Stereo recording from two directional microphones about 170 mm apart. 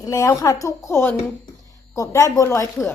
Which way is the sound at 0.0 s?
20° left (ahead or behind).